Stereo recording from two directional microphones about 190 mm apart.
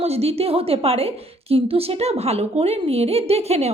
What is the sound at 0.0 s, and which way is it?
A woman's voice, 35° right (ahead or behind).